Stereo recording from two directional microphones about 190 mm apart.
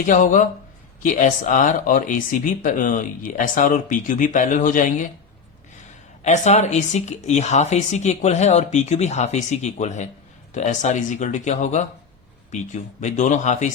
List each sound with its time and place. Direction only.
0.0 s speech: 45° left (ahead or behind)
6.2 s speech: 35° left (ahead or behind)